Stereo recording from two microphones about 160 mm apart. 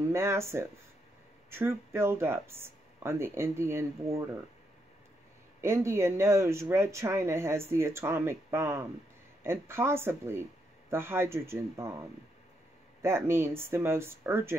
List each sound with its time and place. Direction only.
0.1 s speech: 15° right (ahead or behind)
5.6 s speech: 15° right (ahead or behind)
13.0 s speech: 15° right (ahead or behind)